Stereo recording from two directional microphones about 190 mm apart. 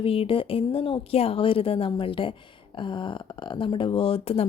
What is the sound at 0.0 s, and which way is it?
Speech, 30° left (ahead or behind).